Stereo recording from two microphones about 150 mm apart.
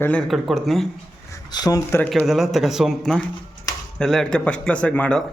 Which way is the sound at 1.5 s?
25° left (ahead or behind).